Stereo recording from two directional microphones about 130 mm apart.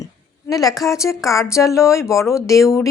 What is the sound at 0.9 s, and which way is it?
Speech, 25° left (ahead or behind).